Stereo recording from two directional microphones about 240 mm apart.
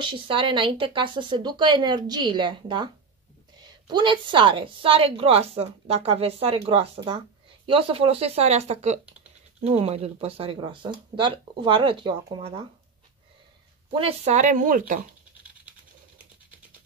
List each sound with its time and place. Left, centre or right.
0.0 s a woman's voice: right
13.9 s speech: right